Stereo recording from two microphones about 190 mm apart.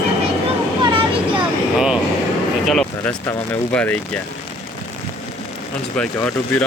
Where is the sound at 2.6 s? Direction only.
5° left (ahead or behind).